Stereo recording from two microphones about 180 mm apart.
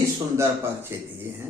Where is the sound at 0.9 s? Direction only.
10° right (ahead or behind).